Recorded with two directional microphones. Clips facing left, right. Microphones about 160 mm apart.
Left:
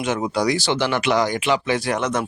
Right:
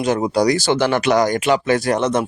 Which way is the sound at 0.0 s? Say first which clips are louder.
Right 5 dB; 35° right (ahead or behind).